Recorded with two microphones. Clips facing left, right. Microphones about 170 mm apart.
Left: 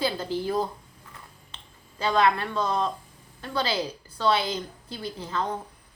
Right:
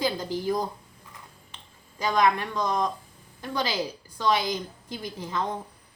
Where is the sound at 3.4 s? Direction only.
15° right (ahead or behind).